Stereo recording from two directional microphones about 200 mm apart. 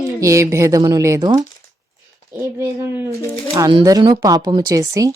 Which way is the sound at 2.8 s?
15° right (ahead or behind).